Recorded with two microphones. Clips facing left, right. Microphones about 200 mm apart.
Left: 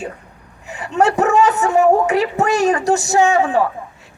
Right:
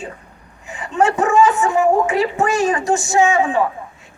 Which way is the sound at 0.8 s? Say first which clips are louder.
Left 1 dB; 40° left (ahead or behind).